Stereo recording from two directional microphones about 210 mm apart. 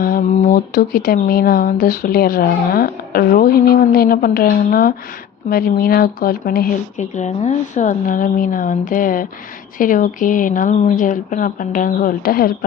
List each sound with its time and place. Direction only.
0.0 s speech: 40° left (ahead or behind)